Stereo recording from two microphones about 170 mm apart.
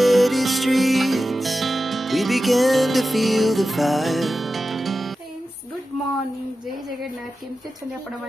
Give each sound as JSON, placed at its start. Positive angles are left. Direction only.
{"t": 0.0, "sound": "music", "side_deg": 0}